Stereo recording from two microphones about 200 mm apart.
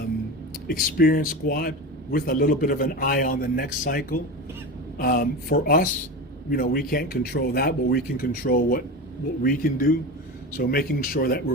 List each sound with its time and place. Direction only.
0.7 s speech: 45° left (ahead or behind)